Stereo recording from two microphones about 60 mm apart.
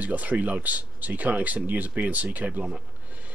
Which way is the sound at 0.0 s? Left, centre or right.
Right.